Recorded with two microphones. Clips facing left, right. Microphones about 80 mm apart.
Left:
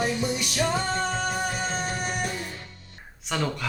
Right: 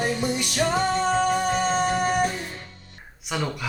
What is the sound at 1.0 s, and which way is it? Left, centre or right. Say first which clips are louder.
Music: right 6 dB; right.